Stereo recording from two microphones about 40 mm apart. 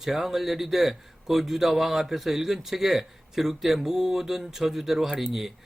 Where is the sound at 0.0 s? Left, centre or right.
Centre.